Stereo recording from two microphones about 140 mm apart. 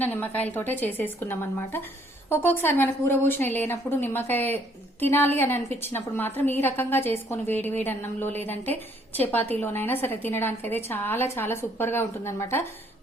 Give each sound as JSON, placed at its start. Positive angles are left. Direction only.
{"t": 0.0, "sound": "a woman's voice", "side_deg": 10}